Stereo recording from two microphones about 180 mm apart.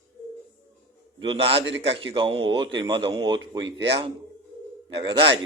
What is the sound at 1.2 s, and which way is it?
A man's voice, 30° right (ahead or behind).